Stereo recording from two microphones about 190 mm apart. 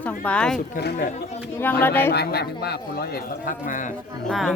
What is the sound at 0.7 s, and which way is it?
Speech, 60° left (ahead or behind).